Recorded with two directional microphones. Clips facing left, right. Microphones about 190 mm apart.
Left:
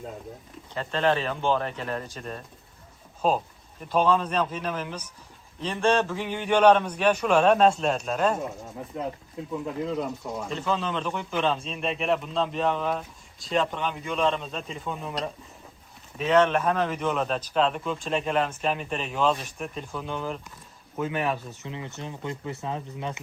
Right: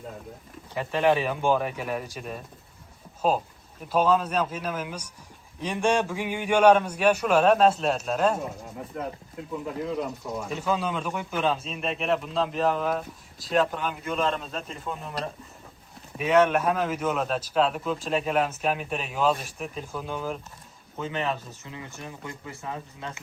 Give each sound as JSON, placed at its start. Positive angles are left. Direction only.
{"t": 0.7, "sound": "a man's voice", "side_deg": -10}
{"t": 10.5, "sound": "a man's voice", "side_deg": -10}
{"t": 21.0, "sound": "speech", "side_deg": 10}
{"t": 21.7, "sound": "speech", "side_deg": 20}